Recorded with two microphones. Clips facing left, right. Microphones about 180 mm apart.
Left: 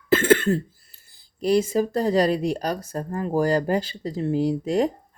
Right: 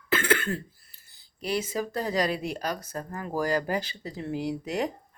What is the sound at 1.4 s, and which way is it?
Speech, 40° left (ahead or behind).